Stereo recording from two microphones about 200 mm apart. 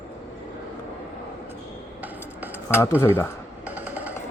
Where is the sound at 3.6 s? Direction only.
10° right (ahead or behind).